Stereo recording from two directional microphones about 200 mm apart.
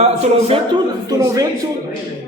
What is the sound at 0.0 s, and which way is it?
Speech, 30° right (ahead or behind).